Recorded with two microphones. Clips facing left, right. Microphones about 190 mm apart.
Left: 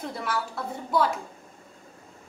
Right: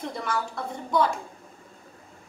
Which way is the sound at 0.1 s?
5° left (ahead or behind).